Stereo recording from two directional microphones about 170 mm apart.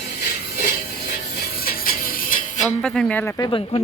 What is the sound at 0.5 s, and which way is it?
Music, 60° left (ahead or behind).